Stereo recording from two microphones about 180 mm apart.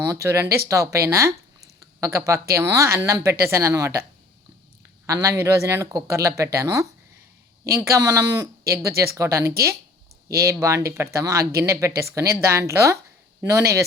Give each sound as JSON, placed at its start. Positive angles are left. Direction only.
{"t": 0.1, "sound": "speech", "side_deg": -15}
{"t": 5.0, "sound": "speech", "side_deg": -15}